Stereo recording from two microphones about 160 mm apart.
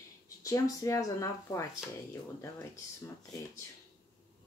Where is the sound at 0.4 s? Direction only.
20° left (ahead or behind).